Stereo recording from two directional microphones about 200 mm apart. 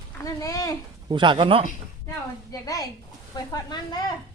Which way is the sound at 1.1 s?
25° right (ahead or behind).